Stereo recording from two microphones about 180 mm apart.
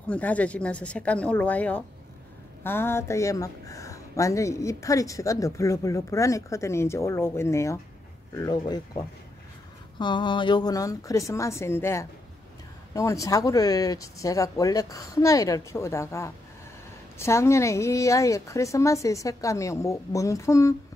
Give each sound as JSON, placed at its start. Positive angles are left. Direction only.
{"t": 0.1, "sound": "speech", "side_deg": 10}